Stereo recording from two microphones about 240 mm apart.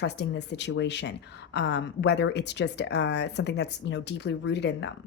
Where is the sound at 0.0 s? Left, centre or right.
Left.